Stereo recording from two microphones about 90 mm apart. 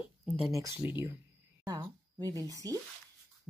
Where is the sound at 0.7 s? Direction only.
20° right (ahead or behind).